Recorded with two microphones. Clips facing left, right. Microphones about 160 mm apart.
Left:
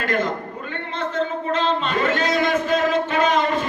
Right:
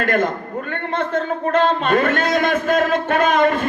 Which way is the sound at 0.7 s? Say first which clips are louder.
Right 6 dB; 55° right (ahead or behind).